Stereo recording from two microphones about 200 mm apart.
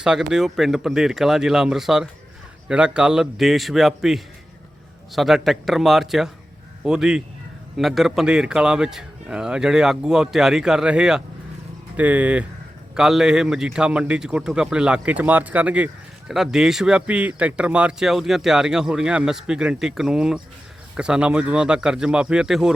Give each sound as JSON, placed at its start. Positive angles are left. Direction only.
{"t": 0.0, "sound": "speech", "side_deg": -5}